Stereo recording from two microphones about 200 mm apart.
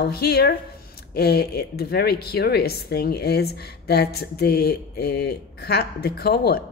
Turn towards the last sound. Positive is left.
turn(degrees=50)  # may be behind; listen again after turning